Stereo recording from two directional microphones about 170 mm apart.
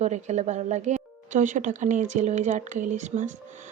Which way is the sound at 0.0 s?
40° right (ahead or behind).